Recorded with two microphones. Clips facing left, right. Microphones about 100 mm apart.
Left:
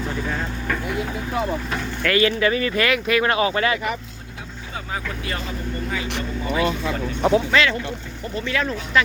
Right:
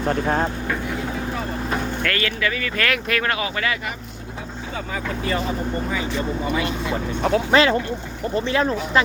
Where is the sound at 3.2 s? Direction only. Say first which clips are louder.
Left 4 dB; 30° left (ahead or behind).